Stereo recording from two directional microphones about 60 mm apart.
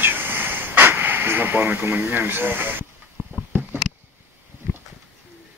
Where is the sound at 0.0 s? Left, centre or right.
Right.